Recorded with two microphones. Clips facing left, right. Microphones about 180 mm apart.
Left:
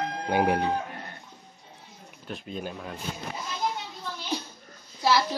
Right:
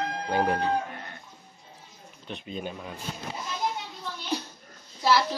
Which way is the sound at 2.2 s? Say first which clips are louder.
Even; centre (ahead or behind).